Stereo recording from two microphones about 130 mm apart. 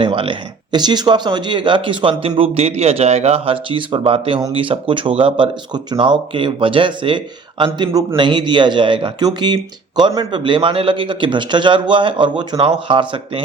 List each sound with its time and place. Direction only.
0.0 s a man's voice: 40° right (ahead or behind)